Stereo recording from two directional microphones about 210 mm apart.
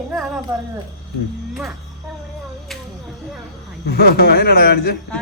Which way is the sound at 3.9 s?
45° left (ahead or behind).